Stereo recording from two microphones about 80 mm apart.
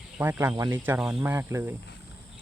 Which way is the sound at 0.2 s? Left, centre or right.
Right.